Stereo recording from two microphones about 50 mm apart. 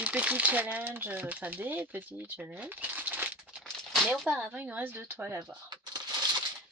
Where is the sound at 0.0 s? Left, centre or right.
Right.